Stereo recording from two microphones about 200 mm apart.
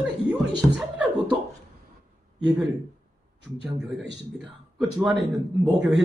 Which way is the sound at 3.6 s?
Centre (ahead or behind).